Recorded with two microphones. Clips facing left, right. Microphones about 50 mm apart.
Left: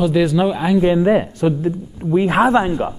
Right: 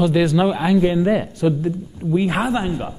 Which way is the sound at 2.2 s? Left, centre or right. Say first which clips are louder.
Left 8 dB; left.